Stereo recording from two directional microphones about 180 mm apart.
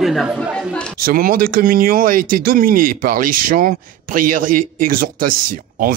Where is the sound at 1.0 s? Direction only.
55° right (ahead or behind).